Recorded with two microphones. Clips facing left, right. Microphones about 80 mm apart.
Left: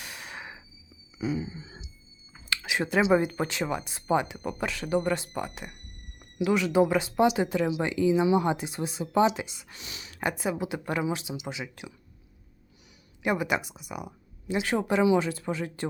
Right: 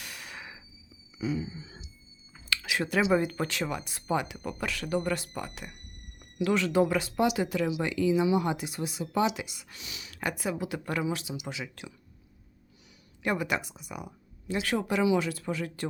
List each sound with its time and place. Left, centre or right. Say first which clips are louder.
0.0 s a sound: left 2 dB; left
1.2 s speech: left 1 dB; left
10.2 s speech: left 3 dB; left
13.2 s speech: left 2 dB; centre